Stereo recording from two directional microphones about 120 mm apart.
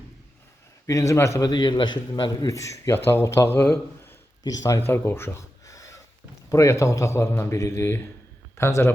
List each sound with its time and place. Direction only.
0.9 s a man's voice: 25° left (ahead or behind)
1.5 s a man's voice: 35° left (ahead or behind); by 4.2 s 20° left (ahead or behind)
4.4 s a man's voice: 30° left (ahead or behind)
4.9 s a sound: 20° left (ahead or behind)
6.5 s a man's voice: 25° left (ahead or behind)